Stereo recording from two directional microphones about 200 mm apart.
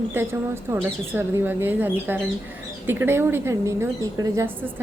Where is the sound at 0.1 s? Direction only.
10° right (ahead or behind).